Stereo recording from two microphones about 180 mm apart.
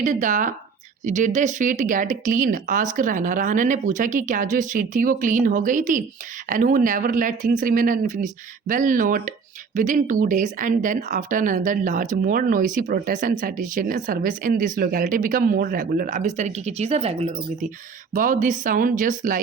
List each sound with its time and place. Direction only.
0.0 s speech: 45° right (ahead or behind)
18.1 s speech: 50° right (ahead or behind)